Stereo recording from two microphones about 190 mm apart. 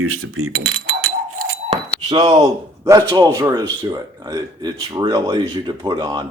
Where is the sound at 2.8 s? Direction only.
20° right (ahead or behind).